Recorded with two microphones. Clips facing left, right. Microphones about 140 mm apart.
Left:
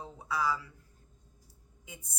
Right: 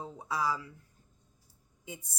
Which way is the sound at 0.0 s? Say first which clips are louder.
Even; 25° right (ahead or behind).